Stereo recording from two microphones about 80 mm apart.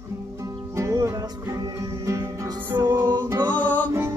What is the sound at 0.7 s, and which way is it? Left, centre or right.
Music, right.